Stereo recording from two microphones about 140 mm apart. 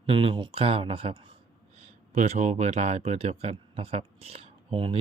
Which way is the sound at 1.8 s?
50° right (ahead or behind).